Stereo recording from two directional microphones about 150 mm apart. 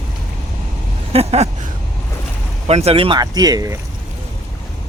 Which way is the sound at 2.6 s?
45° right (ahead or behind).